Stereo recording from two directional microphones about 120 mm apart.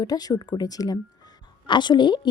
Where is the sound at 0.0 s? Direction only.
30° left (ahead or behind).